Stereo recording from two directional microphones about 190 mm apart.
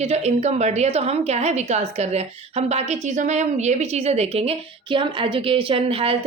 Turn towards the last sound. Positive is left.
turn(degrees=-30)  # may be behind; listen again after turning